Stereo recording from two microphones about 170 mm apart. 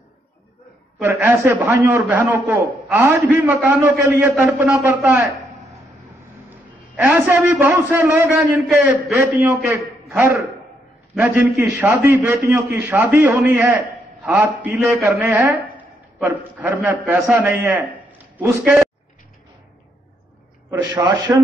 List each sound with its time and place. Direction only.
1.0 s a man's voice: 15° right (ahead or behind)
7.0 s a man's voice: 15° right (ahead or behind)
8.6 s a man's voice: centre (ahead or behind)
18.1 s a sound: 10° right (ahead or behind)
20.9 s a man's voice: 25° right (ahead or behind)